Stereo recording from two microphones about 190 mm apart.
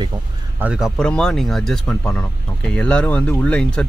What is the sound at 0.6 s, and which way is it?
Speech, 5° right (ahead or behind).